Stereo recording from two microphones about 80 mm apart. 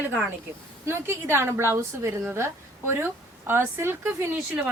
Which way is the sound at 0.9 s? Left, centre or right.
Right.